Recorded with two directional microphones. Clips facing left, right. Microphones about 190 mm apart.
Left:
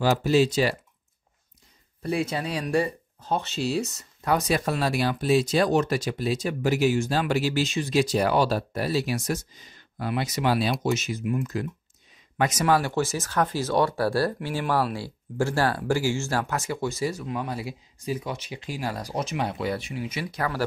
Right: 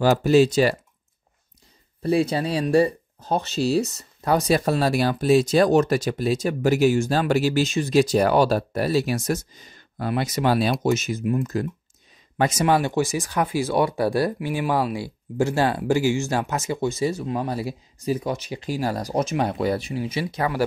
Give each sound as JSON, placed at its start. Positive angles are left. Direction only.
{"t": 0.2, "sound": "speech", "side_deg": -45}
{"t": 2.0, "sound": "speech", "side_deg": -35}
{"t": 12.4, "sound": "speech", "side_deg": -30}